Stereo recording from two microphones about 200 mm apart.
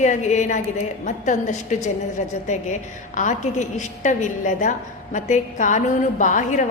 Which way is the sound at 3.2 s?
35° left (ahead or behind).